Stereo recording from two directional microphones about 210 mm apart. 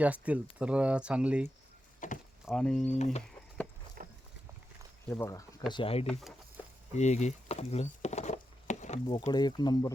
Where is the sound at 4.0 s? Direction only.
40° right (ahead or behind).